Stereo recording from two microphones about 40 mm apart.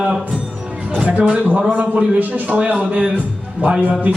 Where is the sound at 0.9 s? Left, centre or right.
Right.